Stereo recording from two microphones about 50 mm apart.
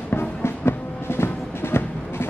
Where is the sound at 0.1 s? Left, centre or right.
Left.